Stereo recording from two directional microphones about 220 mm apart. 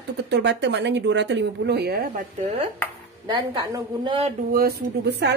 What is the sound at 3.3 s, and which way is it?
A woman's voice, 20° right (ahead or behind).